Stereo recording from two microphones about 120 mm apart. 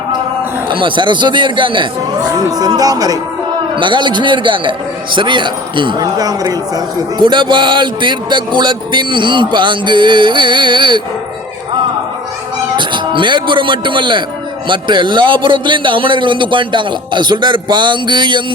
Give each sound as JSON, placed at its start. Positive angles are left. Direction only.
{"t": 0.7, "sound": "a man's voice", "side_deg": -45}
{"t": 12.7, "sound": "speech", "side_deg": -40}